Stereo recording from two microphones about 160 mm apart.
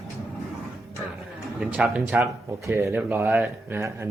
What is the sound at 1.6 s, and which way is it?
Speech, 5° right (ahead or behind).